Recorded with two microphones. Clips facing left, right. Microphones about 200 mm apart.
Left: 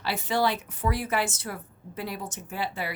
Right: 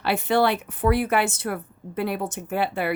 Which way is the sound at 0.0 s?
60° right (ahead or behind).